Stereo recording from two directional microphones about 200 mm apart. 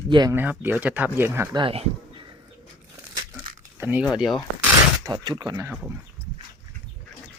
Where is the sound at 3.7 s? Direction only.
10° right (ahead or behind).